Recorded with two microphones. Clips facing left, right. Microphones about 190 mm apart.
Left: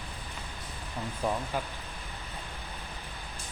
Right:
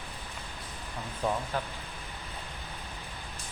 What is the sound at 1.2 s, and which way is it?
Speech, 5° left (ahead or behind).